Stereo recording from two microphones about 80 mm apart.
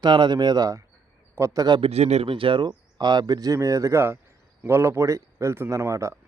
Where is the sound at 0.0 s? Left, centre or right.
Right.